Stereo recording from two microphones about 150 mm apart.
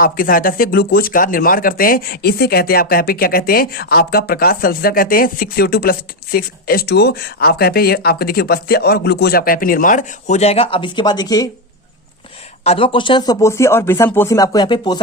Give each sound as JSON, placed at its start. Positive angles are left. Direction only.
{"t": 0.0, "sound": "speech", "side_deg": 70}
{"t": 12.6, "sound": "speech", "side_deg": 40}